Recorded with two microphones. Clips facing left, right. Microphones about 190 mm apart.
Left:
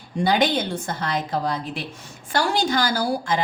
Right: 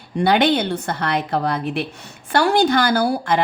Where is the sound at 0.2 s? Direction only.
65° right (ahead or behind).